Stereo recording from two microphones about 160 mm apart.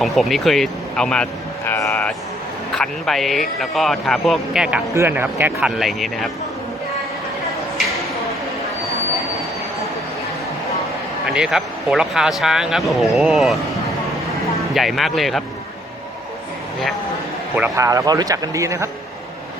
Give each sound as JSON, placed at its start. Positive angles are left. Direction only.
{"t": 0.0, "sound": "speech", "side_deg": 0}
{"t": 5.5, "sound": "speech", "side_deg": 0}
{"t": 11.3, "sound": "speech", "side_deg": 0}
{"t": 14.8, "sound": "speech", "side_deg": 0}
{"t": 17.7, "sound": "speech", "side_deg": -20}